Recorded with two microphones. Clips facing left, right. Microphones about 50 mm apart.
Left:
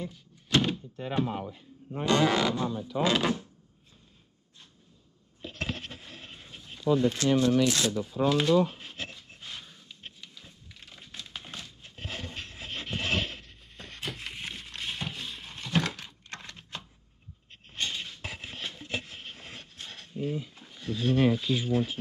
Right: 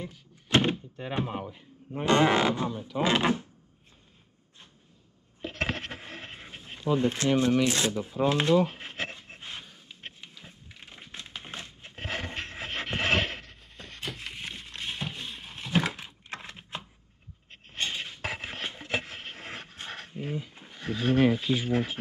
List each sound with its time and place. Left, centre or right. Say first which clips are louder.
0.5 s door: right 2 dB; right
2.0 s speech: right 2 dB; right
5.4 s coin: right 4 dB; right
9.4 s pant: right 2 dB; right
11.9 s a sound: right 5 dB; right
13.5 s a sound: even; centre; by 21.8 s right